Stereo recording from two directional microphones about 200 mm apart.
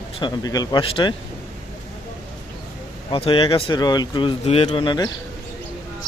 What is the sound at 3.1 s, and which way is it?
Speech, 25° left (ahead or behind).